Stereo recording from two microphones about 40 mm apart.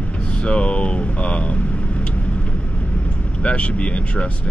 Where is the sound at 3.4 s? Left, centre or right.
Left.